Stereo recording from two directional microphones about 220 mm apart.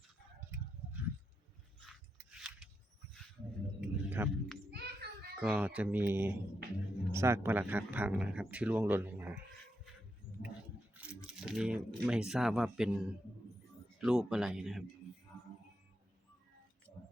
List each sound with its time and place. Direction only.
1.9 s scissors: 5° right (ahead or behind)
3.8 s a sound: 5° right (ahead or behind)
4.7 s a sound: 45° right (ahead or behind)
5.4 s speech: 5° right (ahead or behind)
10.9 s coin: 5° right (ahead or behind)
11.3 s speech: 5° right (ahead or behind)